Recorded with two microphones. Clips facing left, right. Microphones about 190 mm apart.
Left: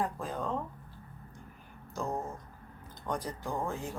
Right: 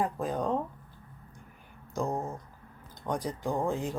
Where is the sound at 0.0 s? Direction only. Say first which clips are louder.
Right 4 dB; 20° right (ahead or behind).